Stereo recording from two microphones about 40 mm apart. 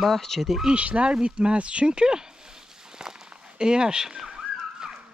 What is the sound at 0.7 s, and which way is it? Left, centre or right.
Speech, right.